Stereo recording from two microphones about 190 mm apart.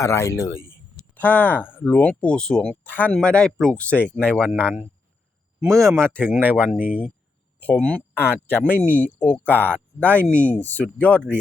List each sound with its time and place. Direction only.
0.0 s speech: 15° left (ahead or behind)
6.4 s speech: 10° right (ahead or behind)
6.7 s speech: 50° left (ahead or behind)
7.6 s speech: 5° left (ahead or behind)